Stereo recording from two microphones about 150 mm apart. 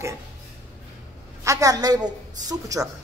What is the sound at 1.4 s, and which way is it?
Speech, 20° right (ahead or behind).